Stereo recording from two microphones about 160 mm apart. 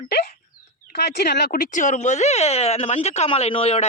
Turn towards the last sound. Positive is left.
turn(degrees=40)  # may be behind; listen again after turning